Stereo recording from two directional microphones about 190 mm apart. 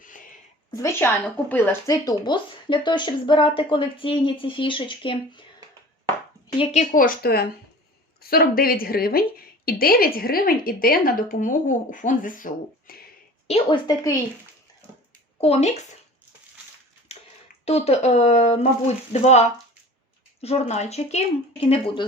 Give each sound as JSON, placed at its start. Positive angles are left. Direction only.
{"t": 0.7, "sound": "speech", "side_deg": 15}
{"t": 6.6, "sound": "a woman's voice", "side_deg": 35}
{"t": 13.5, "sound": "speech", "side_deg": 25}
{"t": 15.4, "sound": "speech", "side_deg": 30}
{"t": 17.1, "sound": "a sound", "side_deg": 30}
{"t": 17.7, "sound": "speech", "side_deg": 35}